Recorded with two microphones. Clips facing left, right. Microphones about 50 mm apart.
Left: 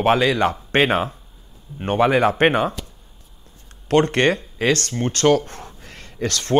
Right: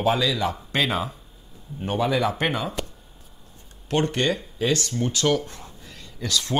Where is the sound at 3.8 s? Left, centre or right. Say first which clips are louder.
Left 6 dB; left.